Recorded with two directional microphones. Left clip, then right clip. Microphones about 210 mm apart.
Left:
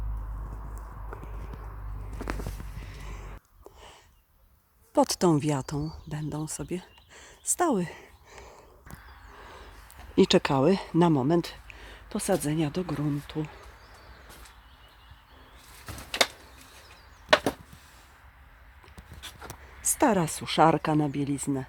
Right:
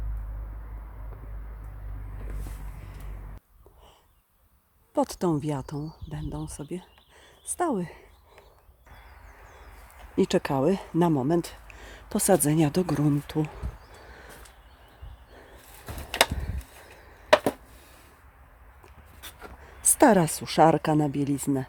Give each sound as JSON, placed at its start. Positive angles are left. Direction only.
{"t": 4.9, "sound": "speech", "side_deg": 10}
{"t": 10.2, "sound": "speech", "side_deg": 5}
{"t": 20.0, "sound": "a woman's voice", "side_deg": -15}